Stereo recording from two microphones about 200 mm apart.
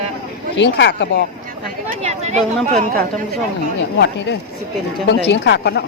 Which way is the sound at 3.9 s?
60° left (ahead or behind).